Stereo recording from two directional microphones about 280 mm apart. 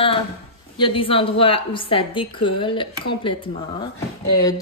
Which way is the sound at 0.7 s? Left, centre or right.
Centre.